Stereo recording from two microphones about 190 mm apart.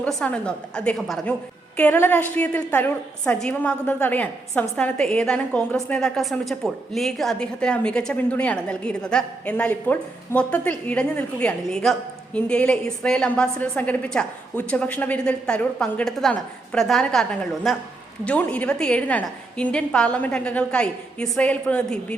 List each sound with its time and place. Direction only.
0.0 s a woman's voice: 5° left (ahead or behind)